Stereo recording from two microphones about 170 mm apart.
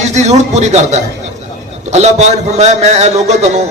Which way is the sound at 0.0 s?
40° right (ahead or behind).